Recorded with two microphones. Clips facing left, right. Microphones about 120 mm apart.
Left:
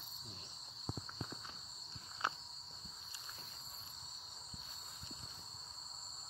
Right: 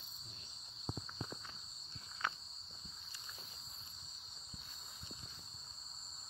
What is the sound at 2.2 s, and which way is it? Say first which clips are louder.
Cricket: left 1 dB; 30° left (ahead or behind).